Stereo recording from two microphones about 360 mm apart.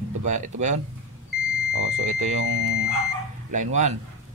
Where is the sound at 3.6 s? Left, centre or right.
Centre.